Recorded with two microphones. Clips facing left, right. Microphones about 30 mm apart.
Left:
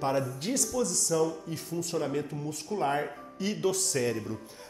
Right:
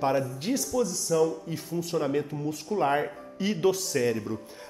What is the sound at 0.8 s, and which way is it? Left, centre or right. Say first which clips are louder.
Speech: left 1 dB; right.